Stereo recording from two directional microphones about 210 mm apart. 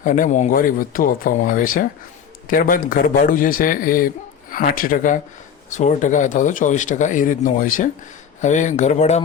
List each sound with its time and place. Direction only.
0.0 s a man's voice: 40° left (ahead or behind)